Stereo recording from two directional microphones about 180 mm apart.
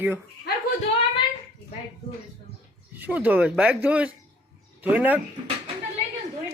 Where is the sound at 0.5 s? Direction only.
60° left (ahead or behind).